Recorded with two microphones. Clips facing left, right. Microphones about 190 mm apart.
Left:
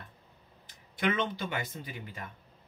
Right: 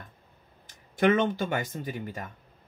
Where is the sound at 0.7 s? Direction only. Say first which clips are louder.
Right 8 dB; 45° right (ahead or behind).